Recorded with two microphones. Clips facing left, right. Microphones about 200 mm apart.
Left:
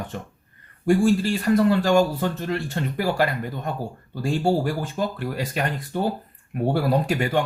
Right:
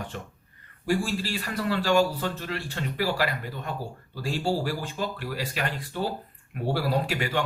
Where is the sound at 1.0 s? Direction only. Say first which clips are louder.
Left 10 dB; 50° left (ahead or behind).